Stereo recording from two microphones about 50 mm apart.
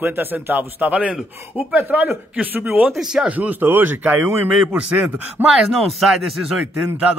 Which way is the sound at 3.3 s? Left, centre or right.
Right.